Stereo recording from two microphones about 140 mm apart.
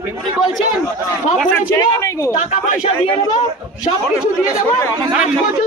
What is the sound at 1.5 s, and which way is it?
Speech, 20° left (ahead or behind).